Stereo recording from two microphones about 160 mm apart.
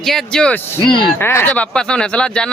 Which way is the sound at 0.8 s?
30° left (ahead or behind).